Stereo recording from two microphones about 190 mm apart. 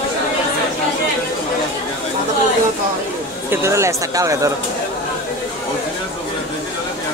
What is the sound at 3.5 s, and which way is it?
Speech, 15° right (ahead or behind).